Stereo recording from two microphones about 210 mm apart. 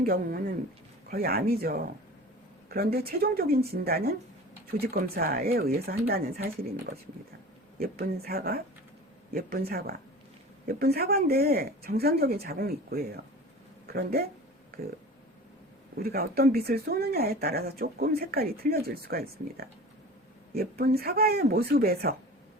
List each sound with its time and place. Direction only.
0.0 s speech: 45° right (ahead or behind)
5.1 s speech: 45° right (ahead or behind)
16.0 s speech: 45° right (ahead or behind)